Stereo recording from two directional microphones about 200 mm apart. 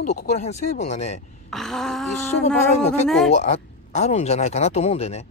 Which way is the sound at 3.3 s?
35° left (ahead or behind).